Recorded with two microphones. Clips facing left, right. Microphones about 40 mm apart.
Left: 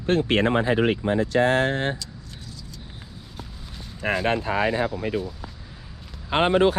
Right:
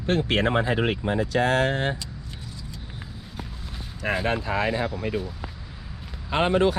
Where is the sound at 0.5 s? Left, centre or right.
Left.